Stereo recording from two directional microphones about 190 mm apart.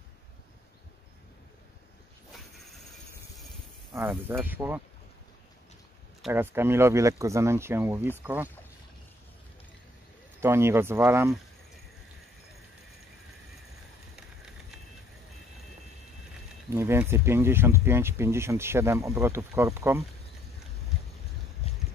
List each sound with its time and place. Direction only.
3.9 s speech: 15° right (ahead or behind)
6.3 s speech: 10° right (ahead or behind)
10.4 s speech: 15° right (ahead or behind)
16.7 s speech: 15° right (ahead or behind)
21.6 s a sound: 30° left (ahead or behind)